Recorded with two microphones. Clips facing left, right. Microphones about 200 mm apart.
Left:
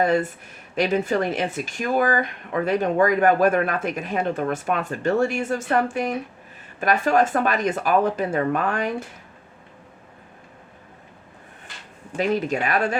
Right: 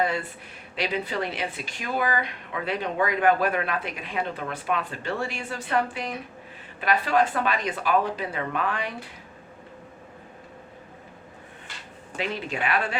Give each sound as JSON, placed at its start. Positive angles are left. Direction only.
{"t": 0.0, "sound": "speech", "side_deg": 45}
{"t": 12.1, "sound": "speech", "side_deg": 45}